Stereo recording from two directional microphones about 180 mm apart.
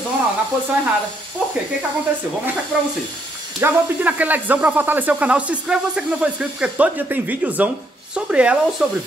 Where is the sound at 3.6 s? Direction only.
10° right (ahead or behind).